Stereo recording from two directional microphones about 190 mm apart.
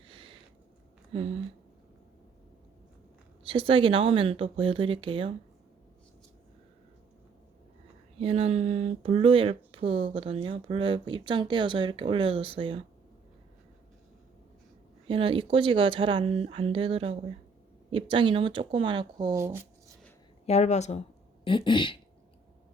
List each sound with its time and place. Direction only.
0.1 s a sound: 25° right (ahead or behind)
1.1 s speech: 30° right (ahead or behind)
3.4 s speech: 30° right (ahead or behind)
8.2 s speech: 30° right (ahead or behind)
15.0 s speech: 30° right (ahead or behind)
20.5 s speech: 35° left (ahead or behind)
21.4 s speech: 25° left (ahead or behind)